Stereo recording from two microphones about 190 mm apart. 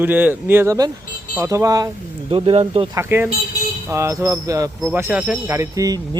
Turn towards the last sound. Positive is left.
turn(degrees=-20)  # may be behind; listen again after turning